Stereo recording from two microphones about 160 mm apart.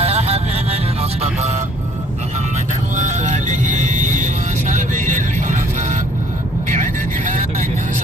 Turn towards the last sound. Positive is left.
turn(degrees=-50)  # may be behind; listen again after turning